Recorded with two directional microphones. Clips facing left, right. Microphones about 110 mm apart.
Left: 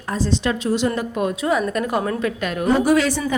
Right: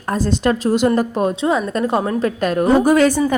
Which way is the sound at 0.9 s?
35° right (ahead or behind).